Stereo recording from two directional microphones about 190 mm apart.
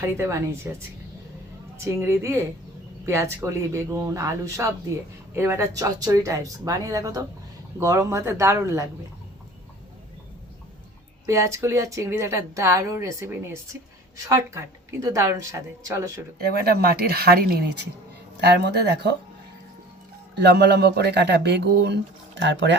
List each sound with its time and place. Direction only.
0.0 s speech: 15° right (ahead or behind)
1.8 s speech: 15° right (ahead or behind)
11.3 s speech: 15° right (ahead or behind)
16.6 s speech: 55° right (ahead or behind)
20.4 s speech: 60° right (ahead or behind)